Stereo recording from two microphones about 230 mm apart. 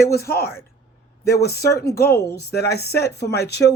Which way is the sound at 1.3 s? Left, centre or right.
Left.